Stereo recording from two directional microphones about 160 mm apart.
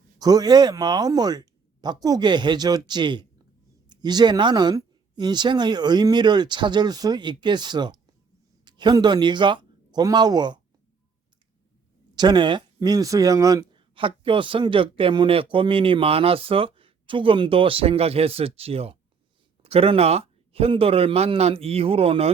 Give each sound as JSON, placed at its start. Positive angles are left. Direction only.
{"t": 0.2, "sound": "speech", "side_deg": -25}
{"t": 12.1, "sound": "speech", "side_deg": -25}